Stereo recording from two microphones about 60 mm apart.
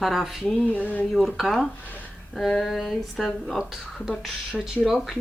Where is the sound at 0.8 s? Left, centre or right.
Left.